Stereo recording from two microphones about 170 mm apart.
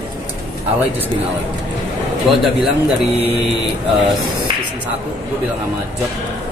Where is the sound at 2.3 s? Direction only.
Centre (ahead or behind).